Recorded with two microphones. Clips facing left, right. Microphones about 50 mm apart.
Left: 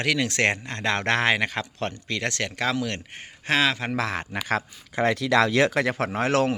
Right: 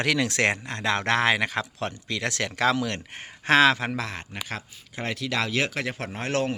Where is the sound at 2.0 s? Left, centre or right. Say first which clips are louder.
Even; centre.